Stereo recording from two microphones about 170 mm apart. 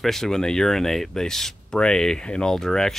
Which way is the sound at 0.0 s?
Centre (ahead or behind).